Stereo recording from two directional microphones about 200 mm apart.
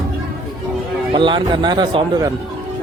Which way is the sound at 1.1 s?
25° right (ahead or behind).